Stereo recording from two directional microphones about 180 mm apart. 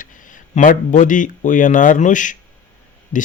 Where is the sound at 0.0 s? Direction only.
45° left (ahead or behind).